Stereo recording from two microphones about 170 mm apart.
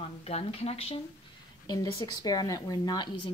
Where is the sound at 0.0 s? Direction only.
35° left (ahead or behind).